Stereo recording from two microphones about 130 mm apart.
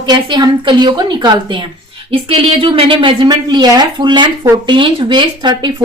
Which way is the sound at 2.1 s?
45° right (ahead or behind).